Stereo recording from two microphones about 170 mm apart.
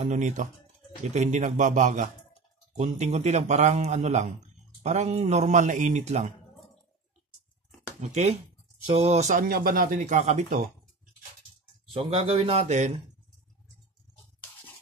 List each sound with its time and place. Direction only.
0.0 s speech: 45° right (ahead or behind)
8.0 s speech: 40° right (ahead or behind)
9.4 s speech: 60° right (ahead or behind)
11.9 s speech: 35° right (ahead or behind)